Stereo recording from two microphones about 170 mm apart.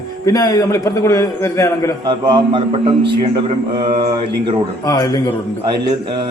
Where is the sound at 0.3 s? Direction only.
20° left (ahead or behind).